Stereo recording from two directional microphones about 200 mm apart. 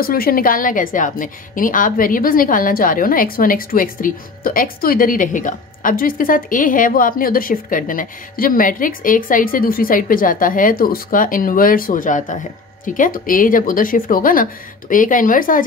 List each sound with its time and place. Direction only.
0.0 s a woman's voice: 45° left (ahead or behind)